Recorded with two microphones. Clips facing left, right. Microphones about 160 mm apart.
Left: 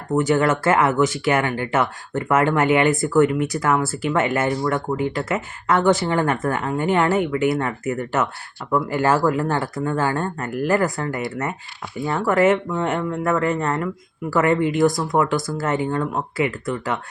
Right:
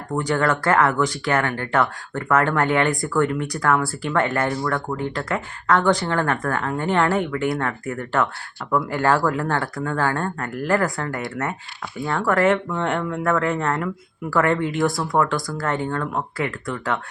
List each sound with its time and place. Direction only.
0.1 s speech: 5° left (ahead or behind)
15.4 s speech: 20° left (ahead or behind)
15.6 s speech: 5° left (ahead or behind)